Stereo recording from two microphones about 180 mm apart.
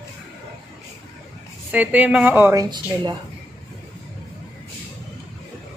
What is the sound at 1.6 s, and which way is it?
A woman's voice, 10° right (ahead or behind).